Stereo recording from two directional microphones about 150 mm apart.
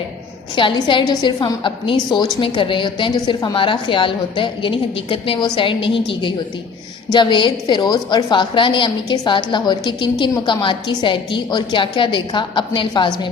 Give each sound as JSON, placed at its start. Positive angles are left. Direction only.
{"t": 0.5, "sound": "a woman's voice", "side_deg": 35}